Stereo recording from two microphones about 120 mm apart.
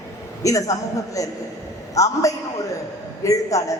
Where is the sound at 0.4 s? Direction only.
30° left (ahead or behind).